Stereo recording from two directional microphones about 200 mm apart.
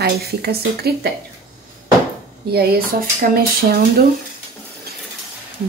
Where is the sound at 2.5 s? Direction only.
50° right (ahead or behind).